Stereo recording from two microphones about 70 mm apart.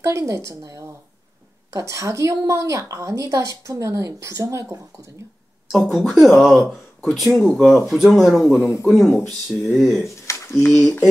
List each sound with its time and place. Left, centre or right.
0.0 s a woman's voice: right
5.7 s speech: centre
10.2 s a sound: left
10.8 s speech: centre